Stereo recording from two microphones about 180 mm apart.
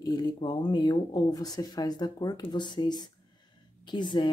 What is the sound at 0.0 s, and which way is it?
Speech, 25° left (ahead or behind).